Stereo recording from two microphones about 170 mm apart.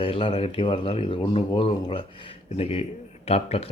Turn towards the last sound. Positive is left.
turn(degrees=35)  # may be behind; listen again after turning